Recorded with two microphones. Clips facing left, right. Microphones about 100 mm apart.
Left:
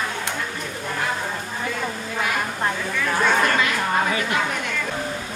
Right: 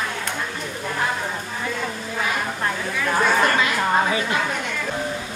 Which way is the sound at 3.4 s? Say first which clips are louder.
Right 1 dB; 25° right (ahead or behind).